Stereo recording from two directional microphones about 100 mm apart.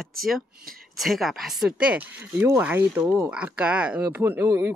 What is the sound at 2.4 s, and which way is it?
Speech, 20° right (ahead or behind).